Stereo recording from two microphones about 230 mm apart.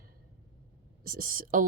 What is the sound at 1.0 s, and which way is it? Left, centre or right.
Speech, right.